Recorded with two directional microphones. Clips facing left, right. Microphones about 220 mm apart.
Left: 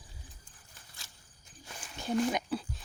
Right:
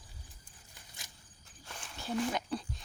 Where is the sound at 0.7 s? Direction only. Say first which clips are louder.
Right 2 dB; 15° right (ahead or behind).